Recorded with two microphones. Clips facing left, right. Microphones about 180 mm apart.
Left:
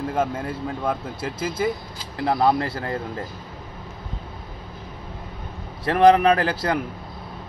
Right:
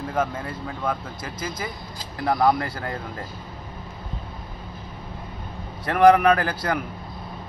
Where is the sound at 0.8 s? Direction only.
25° left (ahead or behind).